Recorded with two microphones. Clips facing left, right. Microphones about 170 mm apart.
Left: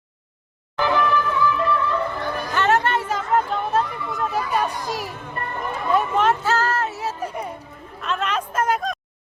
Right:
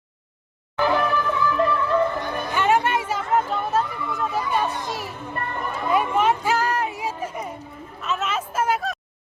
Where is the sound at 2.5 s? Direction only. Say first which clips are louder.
Even; 10° right (ahead or behind).